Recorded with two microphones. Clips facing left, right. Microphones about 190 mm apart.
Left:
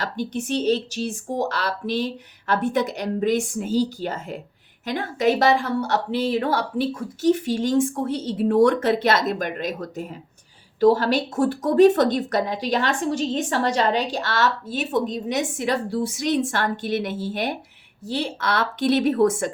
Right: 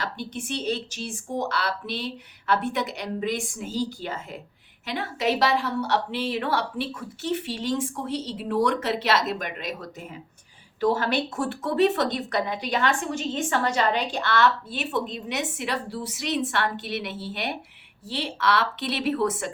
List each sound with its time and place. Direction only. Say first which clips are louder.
0.0 s speech: left 6 dB; 40° left (ahead or behind)